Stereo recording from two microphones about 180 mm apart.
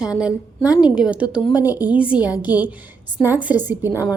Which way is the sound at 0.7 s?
20° left (ahead or behind).